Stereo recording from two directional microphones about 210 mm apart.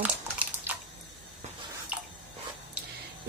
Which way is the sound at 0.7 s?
10° right (ahead or behind).